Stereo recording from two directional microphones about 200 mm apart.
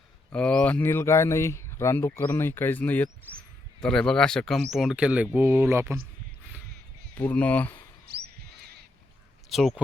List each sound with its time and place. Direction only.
0.3 s speech: 5° left (ahead or behind); by 6.0 s 10° right (ahead or behind)
7.2 s speech: 5° left (ahead or behind)
8.1 s a sound: 50° right (ahead or behind)
9.5 s speech: centre (ahead or behind)